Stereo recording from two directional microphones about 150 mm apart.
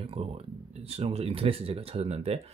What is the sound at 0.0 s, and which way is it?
Speech, 40° right (ahead or behind).